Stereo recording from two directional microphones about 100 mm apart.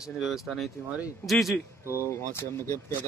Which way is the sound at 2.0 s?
30° left (ahead or behind).